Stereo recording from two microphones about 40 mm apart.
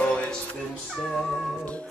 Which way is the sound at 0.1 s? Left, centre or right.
Left.